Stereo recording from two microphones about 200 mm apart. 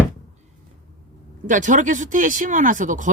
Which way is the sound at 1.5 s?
40° right (ahead or behind).